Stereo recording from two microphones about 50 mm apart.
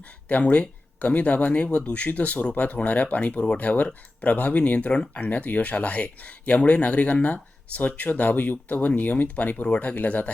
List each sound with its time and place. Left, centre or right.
0.3 s speech: left